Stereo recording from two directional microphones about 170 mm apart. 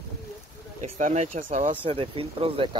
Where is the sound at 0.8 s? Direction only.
45° right (ahead or behind).